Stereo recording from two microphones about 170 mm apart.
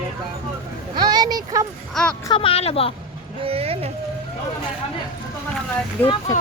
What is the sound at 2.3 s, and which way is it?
Speech, 30° left (ahead or behind).